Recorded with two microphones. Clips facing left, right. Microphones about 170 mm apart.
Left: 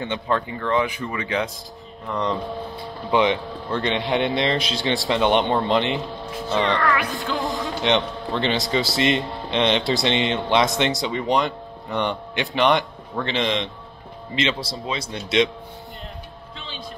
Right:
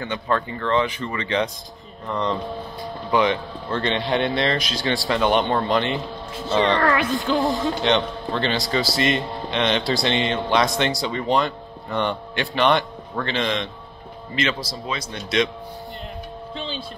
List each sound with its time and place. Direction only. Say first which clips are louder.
0.0 s a man's voice: even; 25° left (ahead or behind)
0.5 s speech: right 1 dB; 10° left (ahead or behind)
3.1 s a man's voice: left 1 dB; 20° left (ahead or behind)
6.5 s music: right 2 dB; 30° right (ahead or behind)
7.8 s a man's voice: even; 20° left (ahead or behind)
16.5 s a sound: right 7 dB; 30° right (ahead or behind)